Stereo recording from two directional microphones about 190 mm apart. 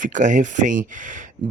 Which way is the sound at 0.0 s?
40° right (ahead or behind).